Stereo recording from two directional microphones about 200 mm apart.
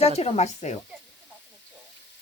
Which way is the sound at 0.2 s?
35° left (ahead or behind).